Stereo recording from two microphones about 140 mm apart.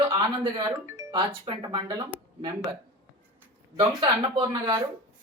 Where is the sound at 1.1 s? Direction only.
35° right (ahead or behind).